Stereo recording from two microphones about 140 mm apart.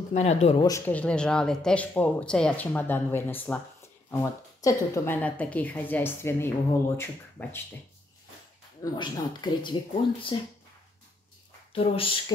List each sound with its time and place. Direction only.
0.1 s speech: 50° left (ahead or behind)
0.6 s speech: 25° left (ahead or behind)
0.8 s speech: 10° left (ahead or behind)
8.8 s speech: 30° left (ahead or behind)
11.7 s speech: 40° left (ahead or behind)